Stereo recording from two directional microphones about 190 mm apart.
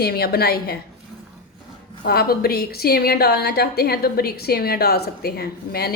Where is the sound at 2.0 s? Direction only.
55° left (ahead or behind).